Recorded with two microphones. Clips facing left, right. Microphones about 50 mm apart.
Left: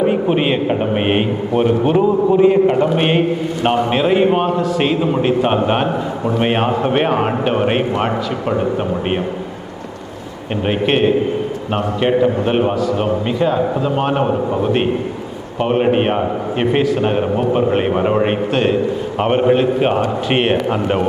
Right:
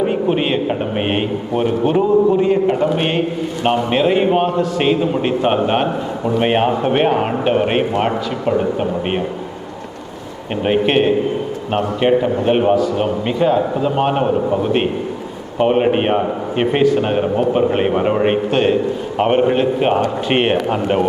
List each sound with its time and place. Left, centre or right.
0.0 s a man's voice: centre
10.7 s a man's voice: centre